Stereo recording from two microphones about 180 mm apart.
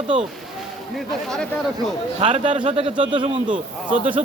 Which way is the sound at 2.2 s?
40° right (ahead or behind).